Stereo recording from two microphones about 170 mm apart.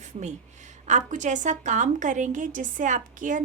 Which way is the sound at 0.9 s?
45° right (ahead or behind).